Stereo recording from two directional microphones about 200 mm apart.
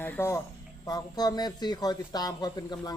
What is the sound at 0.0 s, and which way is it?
Speech, 10° left (ahead or behind).